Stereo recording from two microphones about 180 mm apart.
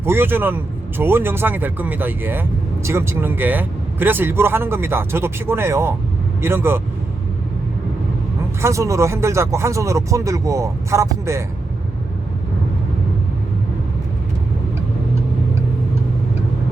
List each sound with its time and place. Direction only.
0.0 s speech: 10° right (ahead or behind)
8.6 s speech: 15° right (ahead or behind)